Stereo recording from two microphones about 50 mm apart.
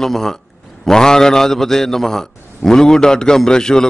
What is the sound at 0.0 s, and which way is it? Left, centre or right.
A man's voice, centre.